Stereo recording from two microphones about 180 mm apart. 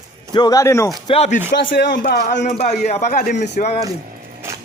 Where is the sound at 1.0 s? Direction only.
35° left (ahead or behind).